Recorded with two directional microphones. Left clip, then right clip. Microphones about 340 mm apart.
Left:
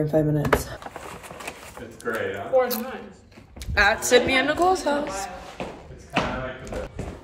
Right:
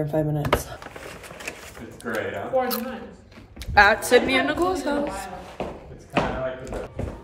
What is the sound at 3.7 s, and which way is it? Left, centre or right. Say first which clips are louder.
A woman's voice: right 2 dB; centre.